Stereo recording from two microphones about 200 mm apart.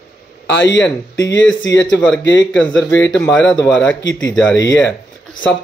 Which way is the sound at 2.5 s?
5° left (ahead or behind).